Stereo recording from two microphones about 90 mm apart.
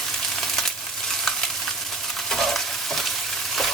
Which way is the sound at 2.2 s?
5° left (ahead or behind).